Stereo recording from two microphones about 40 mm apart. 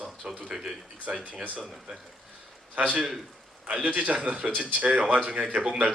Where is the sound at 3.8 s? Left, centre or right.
Right.